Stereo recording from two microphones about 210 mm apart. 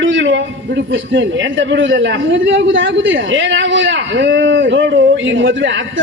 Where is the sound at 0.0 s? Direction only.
60° right (ahead or behind).